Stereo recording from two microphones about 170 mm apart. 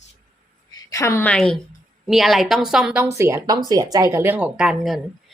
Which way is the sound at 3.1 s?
15° right (ahead or behind).